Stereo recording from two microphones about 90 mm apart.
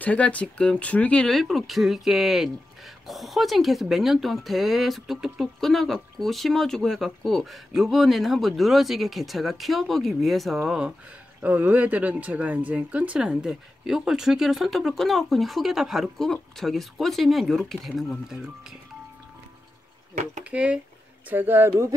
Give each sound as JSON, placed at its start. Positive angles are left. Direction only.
{"t": 0.0, "sound": "speech", "side_deg": 15}
{"t": 11.4, "sound": "speech", "side_deg": -20}
{"t": 20.5, "sound": "speech", "side_deg": -10}
{"t": 21.3, "sound": "speech", "side_deg": -25}